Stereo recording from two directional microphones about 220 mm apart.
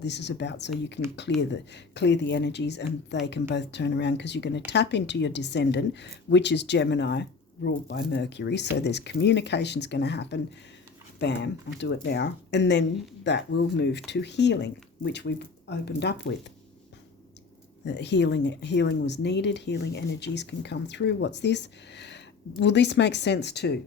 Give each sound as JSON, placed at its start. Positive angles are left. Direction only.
{"t": 0.0, "sound": "speech", "side_deg": 50}
{"t": 17.8, "sound": "speech", "side_deg": 50}